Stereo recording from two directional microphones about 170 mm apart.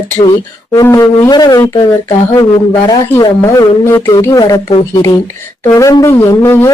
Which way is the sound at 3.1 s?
20° left (ahead or behind).